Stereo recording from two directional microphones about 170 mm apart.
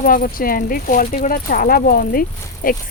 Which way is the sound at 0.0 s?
55° left (ahead or behind).